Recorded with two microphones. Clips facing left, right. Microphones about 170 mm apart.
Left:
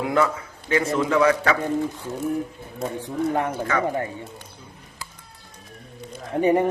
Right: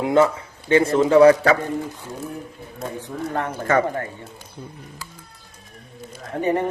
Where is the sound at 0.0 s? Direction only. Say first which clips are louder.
Right 4 dB; 25° right (ahead or behind).